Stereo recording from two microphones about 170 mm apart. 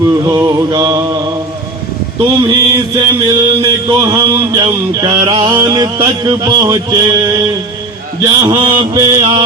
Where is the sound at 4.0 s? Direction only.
25° right (ahead or behind).